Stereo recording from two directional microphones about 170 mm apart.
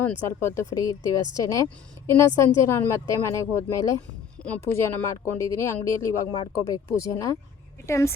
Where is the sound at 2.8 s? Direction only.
15° left (ahead or behind).